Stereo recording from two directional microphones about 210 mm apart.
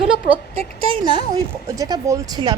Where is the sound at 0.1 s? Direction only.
25° right (ahead or behind).